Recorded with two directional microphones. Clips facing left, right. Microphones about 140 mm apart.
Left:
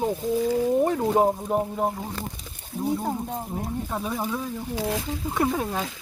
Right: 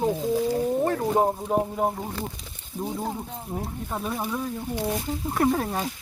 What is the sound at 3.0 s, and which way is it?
Speech, 45° left (ahead or behind).